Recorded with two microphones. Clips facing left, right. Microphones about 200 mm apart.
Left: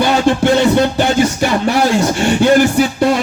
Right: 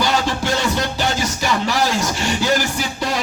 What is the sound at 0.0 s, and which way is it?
Music, 55° left (ahead or behind).